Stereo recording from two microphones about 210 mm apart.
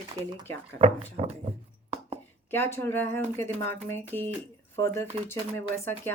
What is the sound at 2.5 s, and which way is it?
Speech, 10° left (ahead or behind).